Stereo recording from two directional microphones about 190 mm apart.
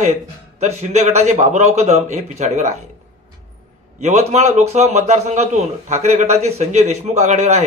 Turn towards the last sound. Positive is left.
turn(degrees=-35)  # may be behind; listen again after turning